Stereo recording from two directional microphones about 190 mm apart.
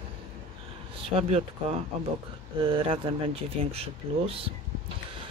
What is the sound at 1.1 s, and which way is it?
Speech, 30° right (ahead or behind).